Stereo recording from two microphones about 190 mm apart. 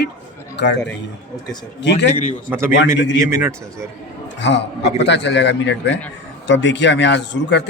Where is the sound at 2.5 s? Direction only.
15° right (ahead or behind).